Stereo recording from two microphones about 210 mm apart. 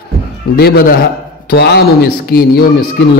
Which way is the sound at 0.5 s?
50° left (ahead or behind).